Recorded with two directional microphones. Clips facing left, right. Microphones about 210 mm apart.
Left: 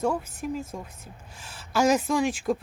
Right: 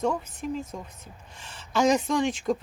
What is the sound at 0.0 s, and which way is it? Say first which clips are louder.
A woman's voice: left 1 dB; 5° left (ahead or behind).